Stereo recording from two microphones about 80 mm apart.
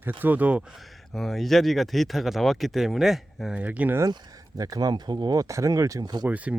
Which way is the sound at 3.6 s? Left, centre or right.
Centre.